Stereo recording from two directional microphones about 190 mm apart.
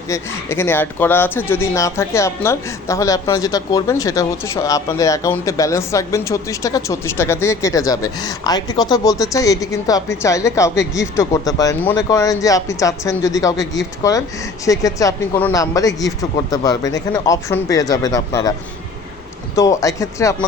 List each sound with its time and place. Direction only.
0.1 s speech: 10° left (ahead or behind)
19.5 s speech: 15° left (ahead or behind)